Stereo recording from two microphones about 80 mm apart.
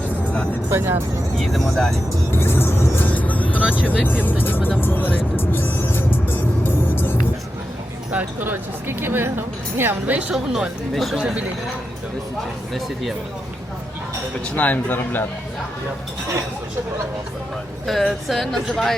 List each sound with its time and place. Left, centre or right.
0.7 s speech: right
1.4 s speech: centre
2.4 s vehicle: left
3.6 s vehicle: centre
4.0 s speech: left
4.8 s music: left
8.1 s speech: right
10.3 s speech: centre
12.7 s speech: centre
14.5 s a man's voice: left
17.8 s speech: centre